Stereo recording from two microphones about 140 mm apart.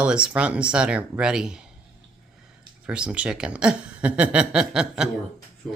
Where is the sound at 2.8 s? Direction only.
5° right (ahead or behind).